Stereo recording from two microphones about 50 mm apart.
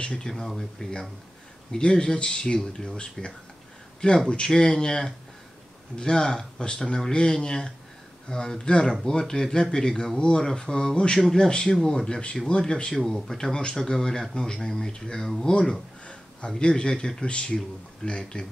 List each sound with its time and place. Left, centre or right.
0.0 s speech: centre